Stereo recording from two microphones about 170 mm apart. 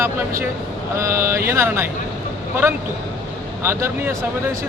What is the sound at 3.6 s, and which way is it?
Speech, 15° right (ahead or behind).